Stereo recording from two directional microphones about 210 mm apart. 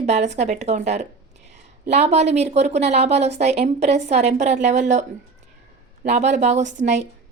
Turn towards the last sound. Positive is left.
turn(degrees=-35)  # may be behind; listen again after turning